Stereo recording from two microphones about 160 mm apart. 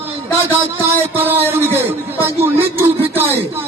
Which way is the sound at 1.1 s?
10° right (ahead or behind).